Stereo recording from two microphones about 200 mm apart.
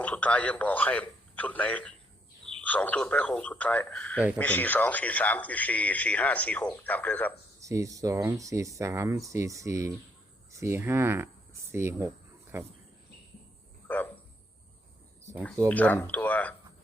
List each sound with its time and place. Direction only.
0.0 s speech: 5° left (ahead or behind)
7.6 s speech: 15° right (ahead or behind)
11.7 s a sound: 15° right (ahead or behind)
13.8 s speech: 10° left (ahead or behind)
15.7 s speech: 10° left (ahead or behind)